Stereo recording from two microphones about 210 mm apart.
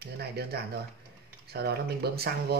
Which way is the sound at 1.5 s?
50° right (ahead or behind).